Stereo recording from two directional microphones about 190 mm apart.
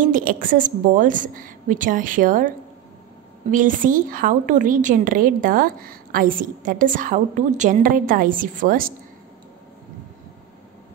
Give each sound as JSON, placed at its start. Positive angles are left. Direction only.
{"t": 0.0, "sound": "a woman's voice", "side_deg": -45}
{"t": 3.5, "sound": "a woman's voice", "side_deg": -45}